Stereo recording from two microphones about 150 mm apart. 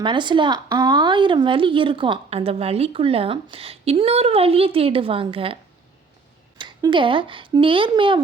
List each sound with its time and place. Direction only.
0.0 s a woman's voice: 30° right (ahead or behind)
6.6 s a woman's voice: 30° right (ahead or behind)